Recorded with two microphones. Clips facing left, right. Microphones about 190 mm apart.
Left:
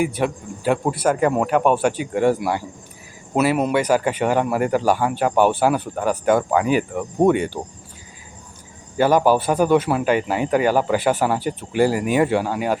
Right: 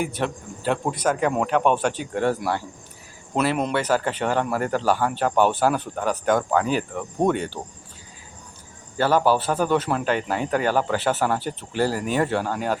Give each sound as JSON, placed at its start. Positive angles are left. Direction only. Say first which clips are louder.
{"t": 0.0, "sound": "speech", "louder": "left 5 dB", "side_deg": 10}
{"t": 9.0, "sound": "speech", "louder": "left 4 dB", "side_deg": 15}